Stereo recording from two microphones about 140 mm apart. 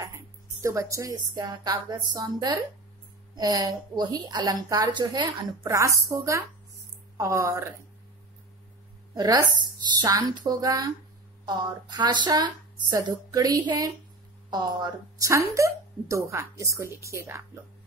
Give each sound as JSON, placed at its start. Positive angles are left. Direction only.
{"t": 0.1, "sound": "speech", "side_deg": -20}
{"t": 9.1, "sound": "speech", "side_deg": -30}